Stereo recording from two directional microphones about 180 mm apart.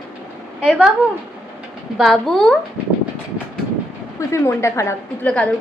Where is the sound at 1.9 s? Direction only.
Centre (ahead or behind).